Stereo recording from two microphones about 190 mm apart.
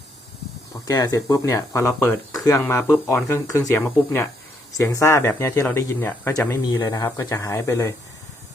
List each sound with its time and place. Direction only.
0.9 s speech: 20° left (ahead or behind)